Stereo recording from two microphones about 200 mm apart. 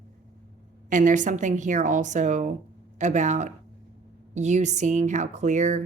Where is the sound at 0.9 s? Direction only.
40° right (ahead or behind).